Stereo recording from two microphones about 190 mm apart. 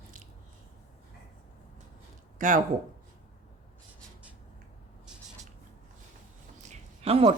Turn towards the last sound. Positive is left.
turn(degrees=-30)  # may be behind; listen again after turning